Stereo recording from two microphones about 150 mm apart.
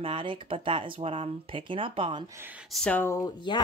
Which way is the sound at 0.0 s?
35° right (ahead or behind).